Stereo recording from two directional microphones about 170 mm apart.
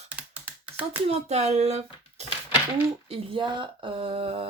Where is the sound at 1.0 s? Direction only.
40° right (ahead or behind).